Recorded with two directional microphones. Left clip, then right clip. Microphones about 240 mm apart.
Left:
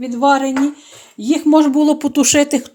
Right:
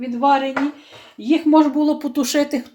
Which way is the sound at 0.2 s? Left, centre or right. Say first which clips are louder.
Left 3 dB; left.